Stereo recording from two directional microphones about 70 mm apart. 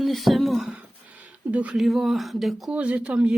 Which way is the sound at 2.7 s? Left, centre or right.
Centre.